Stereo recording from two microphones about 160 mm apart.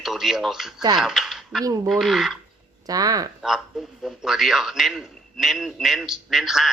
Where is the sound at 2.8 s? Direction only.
25° right (ahead or behind).